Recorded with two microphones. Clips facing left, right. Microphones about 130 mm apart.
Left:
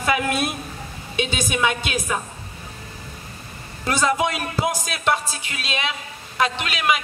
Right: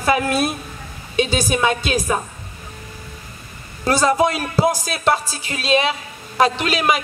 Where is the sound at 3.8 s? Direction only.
35° right (ahead or behind).